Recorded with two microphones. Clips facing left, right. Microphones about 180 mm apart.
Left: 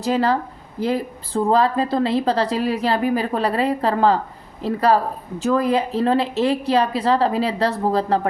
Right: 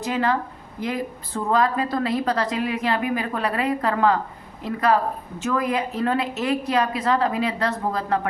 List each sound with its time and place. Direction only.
0.0 s a woman's voice: 35° left (ahead or behind)